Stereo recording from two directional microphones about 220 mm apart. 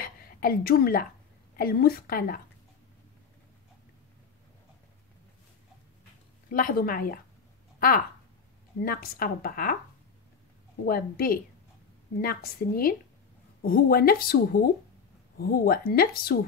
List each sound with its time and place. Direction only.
0.0 s a sound: 40° left (ahead or behind)
1.6 s speech: 45° left (ahead or behind)
6.5 s speech: 40° left (ahead or behind)
8.8 s speech: 40° left (ahead or behind)
10.9 s speech: 40° left (ahead or behind)